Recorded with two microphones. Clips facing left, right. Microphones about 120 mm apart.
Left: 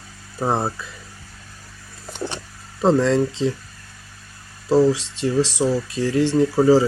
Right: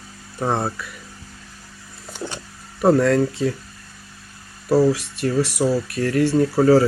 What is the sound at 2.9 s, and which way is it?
Speech, 20° left (ahead or behind).